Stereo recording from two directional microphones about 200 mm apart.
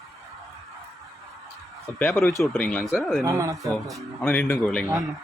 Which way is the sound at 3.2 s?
15° right (ahead or behind).